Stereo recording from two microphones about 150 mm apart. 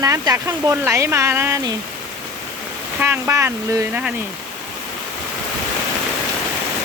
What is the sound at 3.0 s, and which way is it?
Speech, 15° right (ahead or behind).